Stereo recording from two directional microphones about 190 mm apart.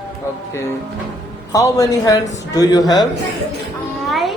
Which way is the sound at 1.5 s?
20° left (ahead or behind).